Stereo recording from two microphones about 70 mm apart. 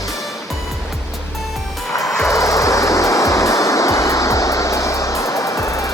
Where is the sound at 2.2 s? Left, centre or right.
Left.